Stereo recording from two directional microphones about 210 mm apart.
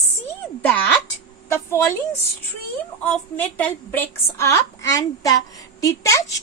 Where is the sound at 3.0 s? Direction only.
10° left (ahead or behind).